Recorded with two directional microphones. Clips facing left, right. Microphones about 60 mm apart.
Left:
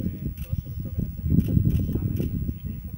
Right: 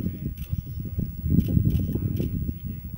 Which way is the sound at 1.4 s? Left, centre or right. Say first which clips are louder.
Even; left.